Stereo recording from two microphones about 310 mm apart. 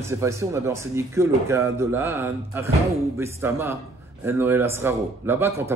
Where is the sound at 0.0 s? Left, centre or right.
Centre.